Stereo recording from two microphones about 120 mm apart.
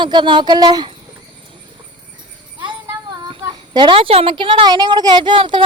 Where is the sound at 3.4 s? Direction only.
35° right (ahead or behind).